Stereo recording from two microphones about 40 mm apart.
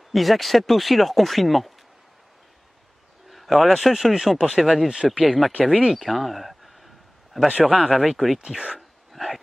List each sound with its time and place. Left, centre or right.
0.1 s speech: centre
3.3 s speech: centre
5.5 s speech: right
5.9 s speech: centre
8.7 s a sound: centre